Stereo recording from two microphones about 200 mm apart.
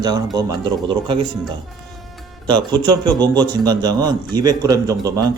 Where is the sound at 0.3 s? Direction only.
20° right (ahead or behind).